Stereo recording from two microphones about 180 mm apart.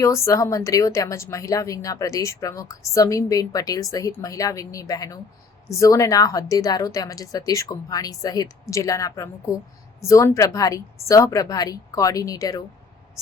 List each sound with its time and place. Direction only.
0.0 s a woman's voice: 15° left (ahead or behind)